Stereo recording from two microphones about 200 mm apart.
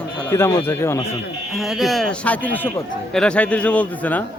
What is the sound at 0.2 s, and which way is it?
Speech, 15° left (ahead or behind).